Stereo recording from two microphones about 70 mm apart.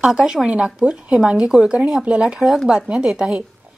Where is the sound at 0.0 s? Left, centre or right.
Centre.